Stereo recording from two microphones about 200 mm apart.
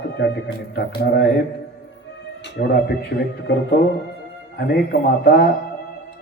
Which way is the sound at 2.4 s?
55° left (ahead or behind).